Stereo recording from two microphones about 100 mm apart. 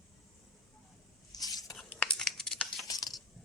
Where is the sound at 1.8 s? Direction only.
10° left (ahead or behind).